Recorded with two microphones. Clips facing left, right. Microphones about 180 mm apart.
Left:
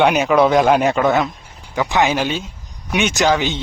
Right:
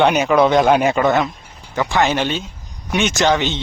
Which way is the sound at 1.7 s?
15° left (ahead or behind).